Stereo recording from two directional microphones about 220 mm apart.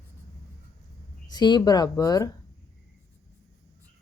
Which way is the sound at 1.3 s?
20° left (ahead or behind).